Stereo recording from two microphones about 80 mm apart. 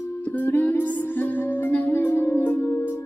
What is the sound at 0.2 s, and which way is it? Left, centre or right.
Music, left.